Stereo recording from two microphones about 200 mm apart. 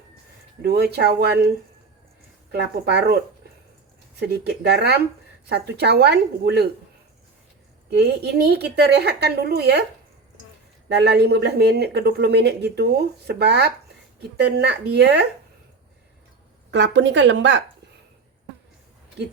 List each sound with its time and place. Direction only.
0.6 s speech: 50° right (ahead or behind)
2.5 s speech: 55° right (ahead or behind)
7.9 s speech: 55° right (ahead or behind)
10.8 s speech: 55° right (ahead or behind)
16.7 s speech: 65° right (ahead or behind)